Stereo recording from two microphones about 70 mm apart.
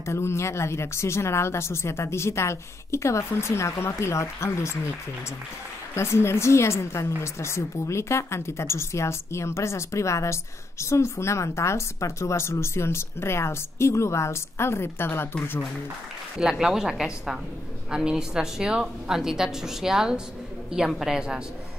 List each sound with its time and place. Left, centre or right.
0.0 s a woman's voice: left
5.9 s a woman's voice: left
16.3 s a woman's voice: centre